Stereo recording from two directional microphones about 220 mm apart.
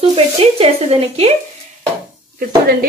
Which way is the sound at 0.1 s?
25° right (ahead or behind).